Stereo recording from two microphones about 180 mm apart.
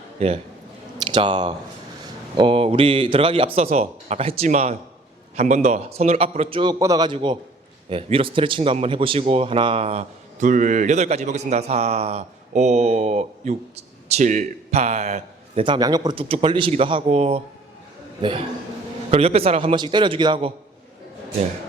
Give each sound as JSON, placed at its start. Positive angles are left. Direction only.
{"t": 0.2, "sound": "a man's voice", "side_deg": -35}